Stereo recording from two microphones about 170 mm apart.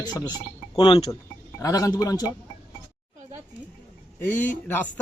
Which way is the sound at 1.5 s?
20° left (ahead or behind).